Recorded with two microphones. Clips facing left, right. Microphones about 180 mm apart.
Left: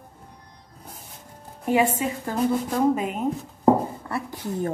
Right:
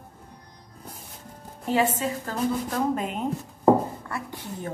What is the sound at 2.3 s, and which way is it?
Sanding, 10° left (ahead or behind).